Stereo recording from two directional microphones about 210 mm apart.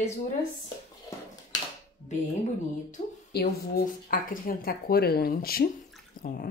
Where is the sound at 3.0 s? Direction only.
35° left (ahead or behind).